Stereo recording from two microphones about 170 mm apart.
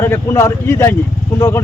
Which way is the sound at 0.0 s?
15° left (ahead or behind).